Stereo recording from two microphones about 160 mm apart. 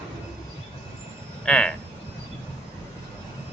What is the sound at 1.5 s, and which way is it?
Speech, 5° left (ahead or behind).